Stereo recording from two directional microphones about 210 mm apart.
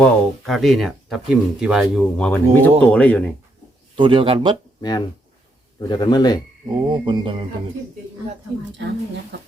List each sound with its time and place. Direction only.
0.0 s speech: centre (ahead or behind)
3.9 s speech: 25° right (ahead or behind)
4.8 s speech: 20° left (ahead or behind)
6.7 s speech: 20° right (ahead or behind)